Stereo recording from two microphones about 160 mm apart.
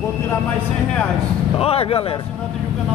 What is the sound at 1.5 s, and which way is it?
Speech, 35° left (ahead or behind).